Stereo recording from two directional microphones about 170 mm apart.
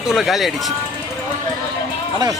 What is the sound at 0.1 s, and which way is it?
Speech, centre (ahead or behind).